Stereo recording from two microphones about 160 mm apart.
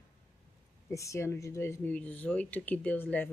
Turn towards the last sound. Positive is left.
turn(degrees=10)  # may be behind; listen again after turning